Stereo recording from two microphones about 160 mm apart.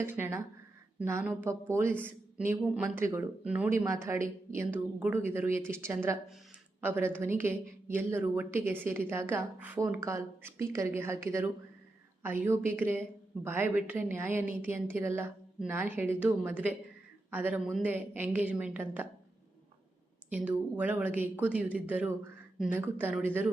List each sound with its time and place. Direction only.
0.0 s a woman's voice: 15° right (ahead or behind)
20.3 s a woman's voice: 10° right (ahead or behind)
22.8 s a woman's voice: 15° right (ahead or behind)